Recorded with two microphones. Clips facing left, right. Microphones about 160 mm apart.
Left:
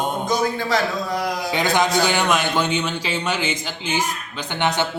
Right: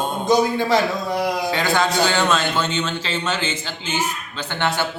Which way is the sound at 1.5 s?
15° left (ahead or behind).